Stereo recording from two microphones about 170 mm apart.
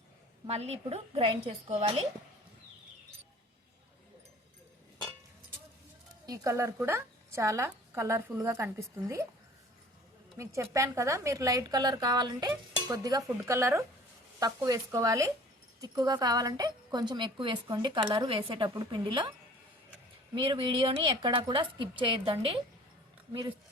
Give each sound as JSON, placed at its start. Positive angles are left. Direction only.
{"t": 0.4, "sound": "a woman's voice", "side_deg": -40}
{"t": 6.2, "sound": "a woman's voice", "side_deg": -20}
{"t": 10.3, "sound": "a woman's voice", "side_deg": -15}
{"t": 20.3, "sound": "a woman's voice", "side_deg": -30}